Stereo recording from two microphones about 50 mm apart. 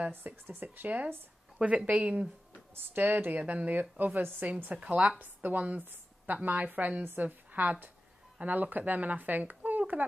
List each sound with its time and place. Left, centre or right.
0.1 s a woman's voice: right
2.7 s a woman's voice: right
4.0 s speech: right
4.6 s a woman's voice: right